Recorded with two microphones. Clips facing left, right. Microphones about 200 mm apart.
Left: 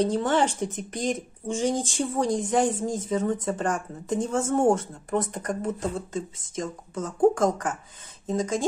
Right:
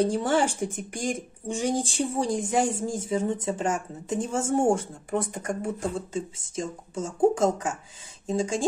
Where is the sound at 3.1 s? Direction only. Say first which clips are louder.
Even; 25° right (ahead or behind).